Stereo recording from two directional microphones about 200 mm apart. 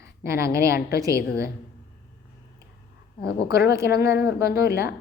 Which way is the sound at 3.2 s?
50° left (ahead or behind).